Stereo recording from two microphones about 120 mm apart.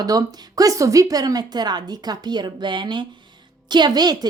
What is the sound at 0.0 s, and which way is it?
Speech, 30° right (ahead or behind).